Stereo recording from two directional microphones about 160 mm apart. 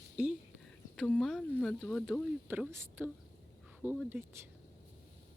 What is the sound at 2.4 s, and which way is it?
Speech, 10° right (ahead or behind).